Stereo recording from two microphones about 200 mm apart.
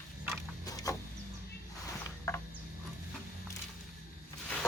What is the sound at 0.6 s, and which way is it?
Printer, 20° left (ahead or behind).